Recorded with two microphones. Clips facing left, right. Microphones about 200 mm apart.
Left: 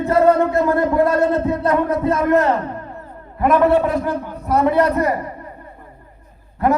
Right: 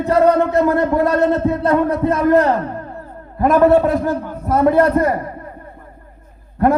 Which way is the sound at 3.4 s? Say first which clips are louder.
Right 3 dB; 45° right (ahead or behind).